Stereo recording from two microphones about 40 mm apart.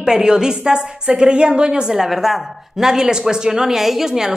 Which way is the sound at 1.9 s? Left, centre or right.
Centre.